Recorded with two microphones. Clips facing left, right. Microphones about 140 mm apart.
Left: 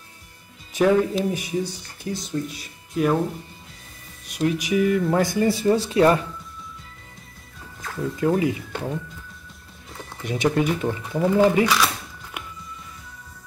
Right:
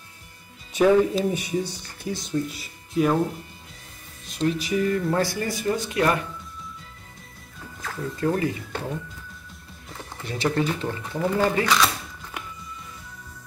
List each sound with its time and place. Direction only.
0.7 s speech: centre (ahead or behind)
4.3 s speech: 10° left (ahead or behind)
5.3 s speech: 25° left (ahead or behind)
7.8 s speech: 10° left (ahead or behind)
10.2 s speech: 15° left (ahead or behind)